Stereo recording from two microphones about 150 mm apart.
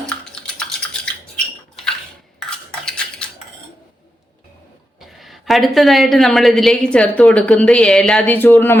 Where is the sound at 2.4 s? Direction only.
5° left (ahead or behind).